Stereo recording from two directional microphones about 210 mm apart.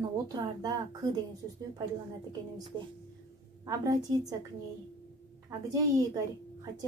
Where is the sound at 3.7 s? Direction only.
20° right (ahead or behind).